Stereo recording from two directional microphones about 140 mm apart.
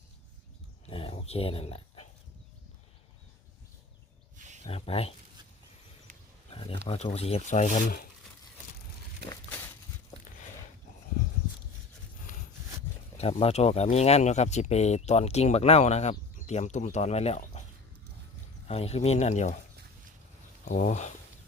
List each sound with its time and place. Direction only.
0.9 s dog: 40° left (ahead or behind)
4.4 s a sound: 60° right (ahead or behind)
4.6 s speech: 45° left (ahead or behind)
6.1 s roaring cats: 70° right (ahead or behind)
6.5 s speech: 40° left (ahead or behind); by 8.0 s 85° left
13.1 s speech: 50° left (ahead or behind)
18.7 s speech: 45° left (ahead or behind)
20.7 s speech: 60° left (ahead or behind)